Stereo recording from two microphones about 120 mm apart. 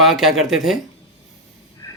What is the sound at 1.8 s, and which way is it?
Vehicle, 35° left (ahead or behind).